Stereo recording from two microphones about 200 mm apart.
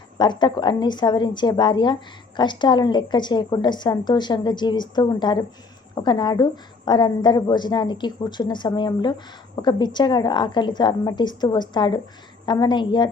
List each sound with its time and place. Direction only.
0.2 s a woman's voice: 20° left (ahead or behind)